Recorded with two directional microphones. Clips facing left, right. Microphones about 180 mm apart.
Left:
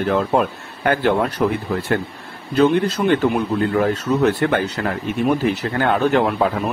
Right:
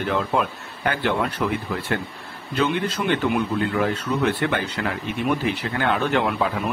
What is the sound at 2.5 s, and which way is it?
Speech, 45° left (ahead or behind).